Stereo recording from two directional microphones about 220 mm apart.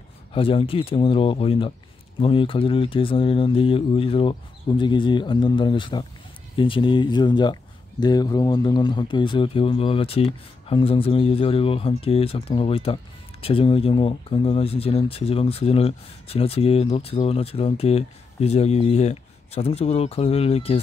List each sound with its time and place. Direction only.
0.3 s speech: 25° left (ahead or behind)